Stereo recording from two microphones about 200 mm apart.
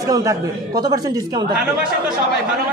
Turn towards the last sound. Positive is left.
turn(degrees=-20)  # may be behind; listen again after turning